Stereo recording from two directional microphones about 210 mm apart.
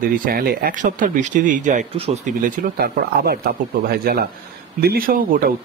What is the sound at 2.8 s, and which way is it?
Speech, 45° right (ahead or behind).